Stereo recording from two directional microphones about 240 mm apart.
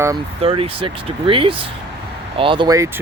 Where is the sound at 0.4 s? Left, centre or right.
Right.